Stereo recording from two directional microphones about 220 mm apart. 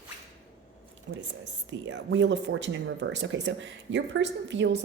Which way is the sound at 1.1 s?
55° right (ahead or behind).